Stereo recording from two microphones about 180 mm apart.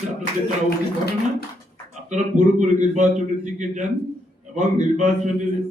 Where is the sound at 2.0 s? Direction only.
40° right (ahead or behind).